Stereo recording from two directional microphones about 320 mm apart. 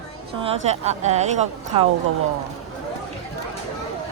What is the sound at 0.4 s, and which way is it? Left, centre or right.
A woman's voice, centre.